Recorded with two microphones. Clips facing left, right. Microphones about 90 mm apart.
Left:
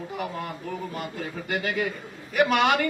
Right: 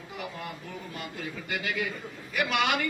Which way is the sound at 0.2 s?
45° left (ahead or behind).